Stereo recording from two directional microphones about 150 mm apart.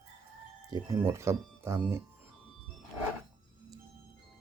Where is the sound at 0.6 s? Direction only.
25° right (ahead or behind).